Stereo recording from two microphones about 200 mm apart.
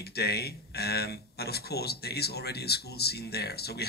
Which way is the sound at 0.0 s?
50° left (ahead or behind).